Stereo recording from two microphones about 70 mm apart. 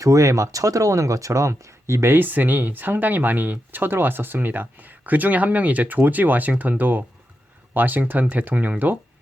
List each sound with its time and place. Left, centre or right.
0.0 s speech: right